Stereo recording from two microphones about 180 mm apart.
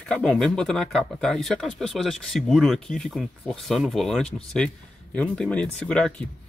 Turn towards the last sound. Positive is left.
turn(degrees=5)  # may be behind; listen again after turning